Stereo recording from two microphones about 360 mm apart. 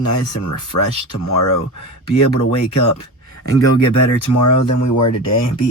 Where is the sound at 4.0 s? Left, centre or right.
Left.